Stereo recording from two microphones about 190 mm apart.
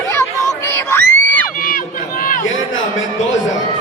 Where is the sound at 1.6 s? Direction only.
45° left (ahead or behind).